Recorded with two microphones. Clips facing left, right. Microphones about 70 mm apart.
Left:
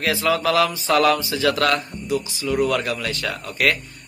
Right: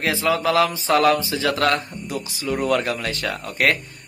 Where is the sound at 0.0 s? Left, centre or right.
Right.